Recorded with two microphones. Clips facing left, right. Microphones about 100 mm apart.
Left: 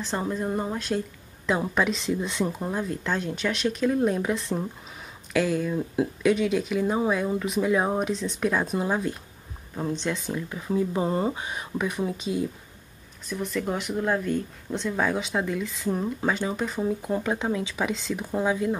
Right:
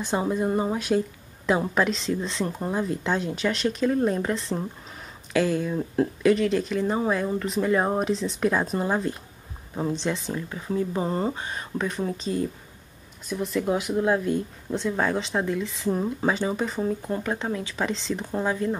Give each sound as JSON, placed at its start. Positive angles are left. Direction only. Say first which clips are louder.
{"t": 0.1, "sound": "speech", "louder": "right 4 dB", "side_deg": -10}
{"t": 14.7, "sound": "speech", "louder": "right 1 dB", "side_deg": -5}
{"t": 17.0, "sound": "speech", "louder": "left 1 dB", "side_deg": 15}